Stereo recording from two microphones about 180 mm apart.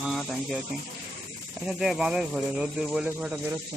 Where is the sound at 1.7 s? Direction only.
Centre (ahead or behind).